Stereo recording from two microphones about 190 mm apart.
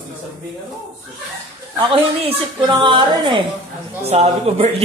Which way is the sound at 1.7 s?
30° right (ahead or behind).